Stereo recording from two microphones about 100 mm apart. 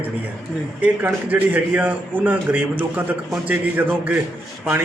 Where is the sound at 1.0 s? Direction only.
15° right (ahead or behind).